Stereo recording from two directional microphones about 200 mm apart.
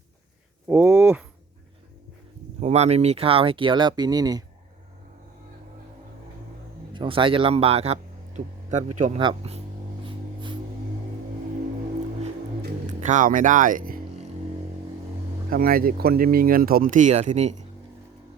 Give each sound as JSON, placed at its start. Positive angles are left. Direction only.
{"t": 0.7, "sound": "speech", "side_deg": -5}
{"t": 2.6, "sound": "speech", "side_deg": -35}
{"t": 6.9, "sound": "a man's voice", "side_deg": -25}
{"t": 9.1, "sound": "speech", "side_deg": -25}
{"t": 10.0, "sound": "a sound", "side_deg": -25}
{"t": 12.9, "sound": "music", "side_deg": -40}
{"t": 15.4, "sound": "speech", "side_deg": -45}